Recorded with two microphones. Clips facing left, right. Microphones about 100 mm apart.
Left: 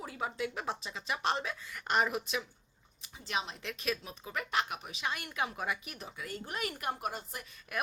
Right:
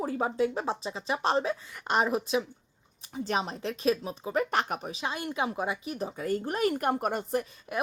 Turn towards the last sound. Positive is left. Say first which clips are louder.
# right 5 dB
turn(degrees=-25)  # may be behind; listen again after turning